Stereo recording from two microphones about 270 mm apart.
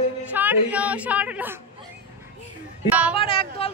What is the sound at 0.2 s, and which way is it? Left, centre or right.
A woman's voice, centre.